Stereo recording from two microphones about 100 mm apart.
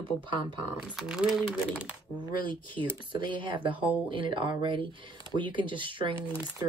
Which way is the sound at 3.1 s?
55° right (ahead or behind).